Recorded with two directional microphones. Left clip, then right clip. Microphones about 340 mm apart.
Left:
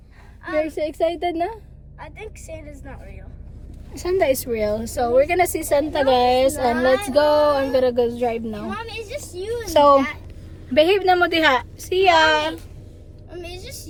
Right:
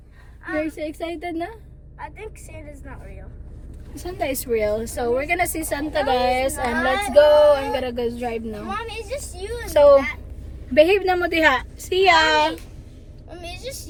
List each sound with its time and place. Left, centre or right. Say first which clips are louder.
0.9 s a woman's voice: left 7 dB; left
2.6 s a woman's voice: left 1 dB; centre
6.2 s speech: left 4 dB; centre
7.9 s a woman's voice: left 5 dB; centre
9.7 s a woman's voice: right 1 dB; centre
13.3 s a sound: right 1 dB; centre